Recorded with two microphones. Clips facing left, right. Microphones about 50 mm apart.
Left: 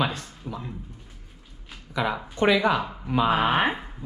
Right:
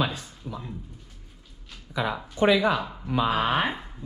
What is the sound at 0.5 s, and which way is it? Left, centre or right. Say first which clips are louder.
Speech: left 2 dB; left.